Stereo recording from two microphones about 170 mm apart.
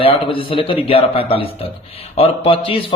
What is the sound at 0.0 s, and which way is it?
Speech, 30° left (ahead or behind).